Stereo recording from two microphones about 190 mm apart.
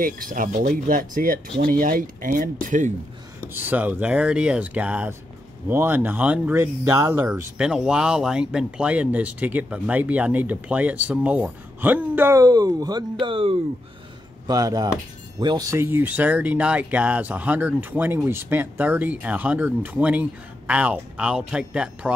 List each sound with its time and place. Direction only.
0.0 s speech: 45° right (ahead or behind)
3.5 s speech: 10° right (ahead or behind)